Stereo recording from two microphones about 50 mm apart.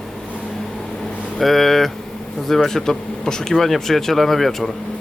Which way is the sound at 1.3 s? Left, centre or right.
Centre.